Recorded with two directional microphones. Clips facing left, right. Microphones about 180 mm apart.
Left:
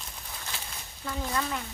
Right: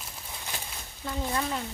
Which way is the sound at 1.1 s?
25° right (ahead or behind).